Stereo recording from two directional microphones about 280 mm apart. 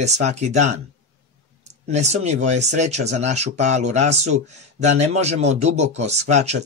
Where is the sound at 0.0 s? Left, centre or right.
Right.